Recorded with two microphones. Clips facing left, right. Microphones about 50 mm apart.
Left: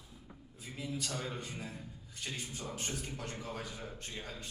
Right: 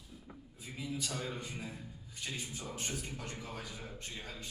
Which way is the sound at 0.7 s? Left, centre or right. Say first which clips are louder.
Even; centre.